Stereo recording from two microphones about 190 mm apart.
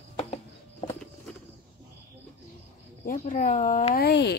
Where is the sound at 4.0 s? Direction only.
60° left (ahead or behind).